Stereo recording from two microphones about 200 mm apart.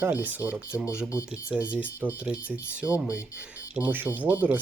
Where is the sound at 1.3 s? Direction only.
5° right (ahead or behind).